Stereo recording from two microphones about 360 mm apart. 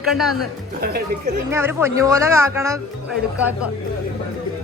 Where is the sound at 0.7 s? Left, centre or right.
Right.